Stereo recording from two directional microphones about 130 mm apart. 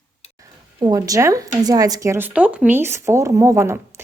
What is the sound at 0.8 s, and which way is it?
A woman's voice, 30° right (ahead or behind).